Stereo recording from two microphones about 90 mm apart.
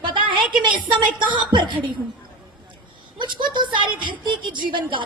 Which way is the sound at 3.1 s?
60° right (ahead or behind).